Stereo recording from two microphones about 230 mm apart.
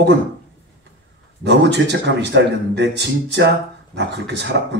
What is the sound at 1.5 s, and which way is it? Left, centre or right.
Speech, right.